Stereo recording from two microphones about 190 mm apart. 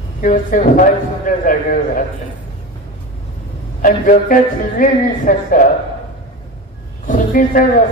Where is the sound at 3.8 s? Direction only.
45° left (ahead or behind).